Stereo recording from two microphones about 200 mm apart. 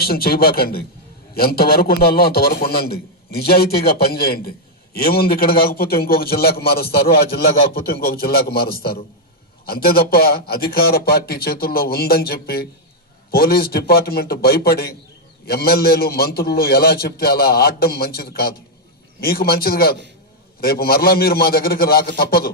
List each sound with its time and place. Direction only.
0.0 s a man's voice: 50° left (ahead or behind)